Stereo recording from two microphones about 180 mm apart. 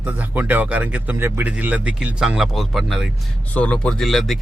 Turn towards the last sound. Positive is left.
turn(degrees=0)  # may be behind; listen again after turning